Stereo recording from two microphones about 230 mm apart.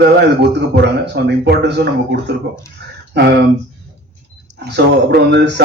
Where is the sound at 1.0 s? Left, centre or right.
Right.